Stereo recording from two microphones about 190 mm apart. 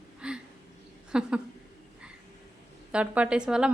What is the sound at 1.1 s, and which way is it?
Speech, 5° right (ahead or behind).